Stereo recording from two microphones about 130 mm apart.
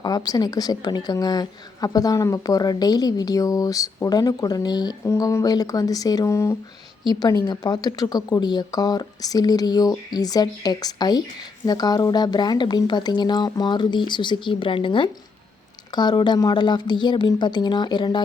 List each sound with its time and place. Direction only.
0.0 s a woman's voice: 30° left (ahead or behind)